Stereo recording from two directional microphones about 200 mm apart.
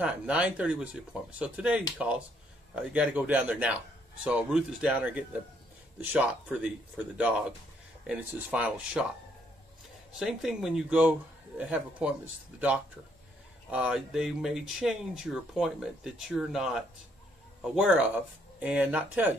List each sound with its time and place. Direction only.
0.0 s speech: 5° right (ahead or behind)
10.1 s speech: centre (ahead or behind)